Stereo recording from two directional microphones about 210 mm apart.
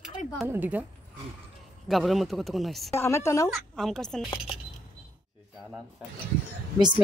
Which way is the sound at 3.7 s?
Centre (ahead or behind).